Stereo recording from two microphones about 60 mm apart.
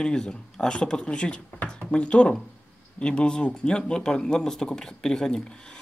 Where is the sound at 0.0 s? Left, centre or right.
Centre.